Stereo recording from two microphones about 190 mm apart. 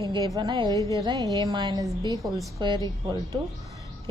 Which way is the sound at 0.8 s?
15° left (ahead or behind).